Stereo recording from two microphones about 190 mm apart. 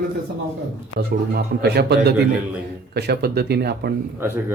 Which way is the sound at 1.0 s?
55° right (ahead or behind).